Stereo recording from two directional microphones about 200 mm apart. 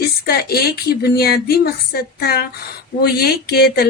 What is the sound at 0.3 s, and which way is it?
Speech, 50° left (ahead or behind).